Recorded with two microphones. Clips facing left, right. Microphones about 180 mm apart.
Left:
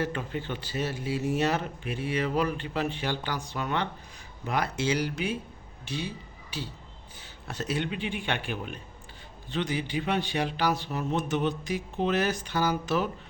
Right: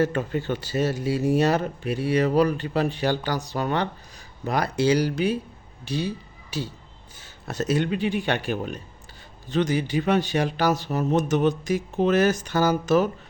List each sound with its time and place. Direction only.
0.0 s a man's voice: 45° right (ahead or behind)